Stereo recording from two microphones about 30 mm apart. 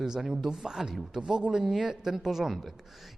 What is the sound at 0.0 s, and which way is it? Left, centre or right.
Speech, centre.